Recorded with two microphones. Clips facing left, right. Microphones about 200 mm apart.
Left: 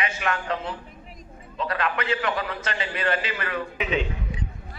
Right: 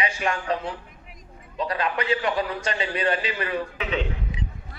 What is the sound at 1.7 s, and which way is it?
A man's voice, 35° right (ahead or behind).